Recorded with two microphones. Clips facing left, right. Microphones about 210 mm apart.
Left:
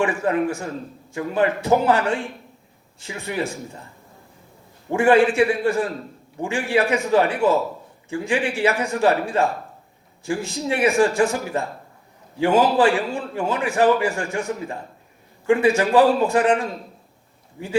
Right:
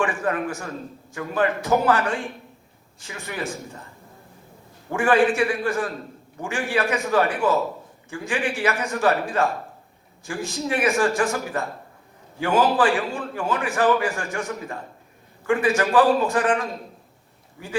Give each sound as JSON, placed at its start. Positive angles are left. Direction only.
{"t": 0.0, "sound": "a man's voice", "side_deg": 25}
{"t": 4.9, "sound": "a man's voice", "side_deg": 25}